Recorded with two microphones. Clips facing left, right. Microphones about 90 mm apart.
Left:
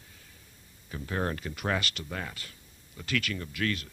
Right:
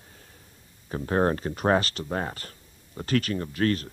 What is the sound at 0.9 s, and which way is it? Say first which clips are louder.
Speech: right 8 dB; 40° right (ahead or behind).